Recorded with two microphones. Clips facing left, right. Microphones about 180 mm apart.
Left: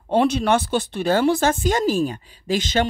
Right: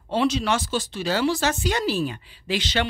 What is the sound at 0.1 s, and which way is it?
Speech, 50° left (ahead or behind).